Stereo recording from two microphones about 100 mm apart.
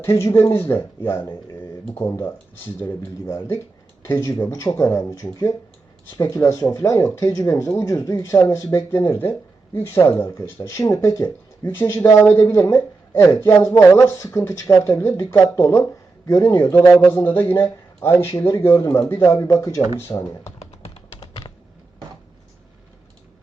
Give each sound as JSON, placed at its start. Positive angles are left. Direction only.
{"t": 0.0, "sound": "speech", "side_deg": 25}
{"t": 17.0, "sound": "speech", "side_deg": 20}
{"t": 20.6, "sound": "typing", "side_deg": 80}